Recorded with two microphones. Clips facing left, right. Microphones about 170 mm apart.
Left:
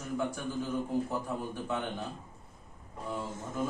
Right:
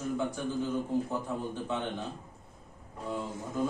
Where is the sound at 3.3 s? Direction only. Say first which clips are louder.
Right 3 dB; 10° right (ahead or behind).